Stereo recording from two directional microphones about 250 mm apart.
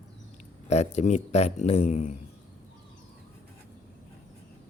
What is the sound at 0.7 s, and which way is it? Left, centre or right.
A man's voice, left.